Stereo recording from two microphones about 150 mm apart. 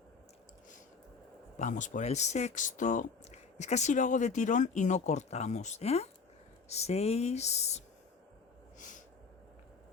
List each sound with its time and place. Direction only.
1.5 s speech: 55° left (ahead or behind)